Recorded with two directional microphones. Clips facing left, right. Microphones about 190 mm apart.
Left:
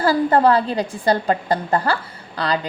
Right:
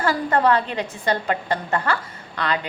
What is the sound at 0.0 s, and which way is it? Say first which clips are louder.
A woman's voice: left 4 dB; 30° left (ahead or behind).